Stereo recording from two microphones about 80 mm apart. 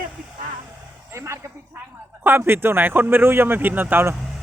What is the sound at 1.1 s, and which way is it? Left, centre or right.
Speech, right.